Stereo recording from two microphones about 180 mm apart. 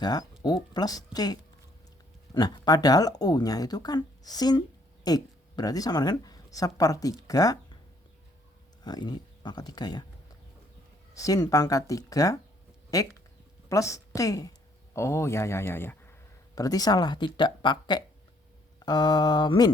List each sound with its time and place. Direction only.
0.0 s speech: 20° left (ahead or behind)
8.8 s speech: 25° left (ahead or behind)
11.1 s a woman's voice: 20° left (ahead or behind)